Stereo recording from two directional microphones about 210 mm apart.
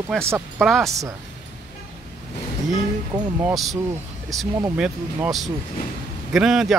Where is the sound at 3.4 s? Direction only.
5° right (ahead or behind).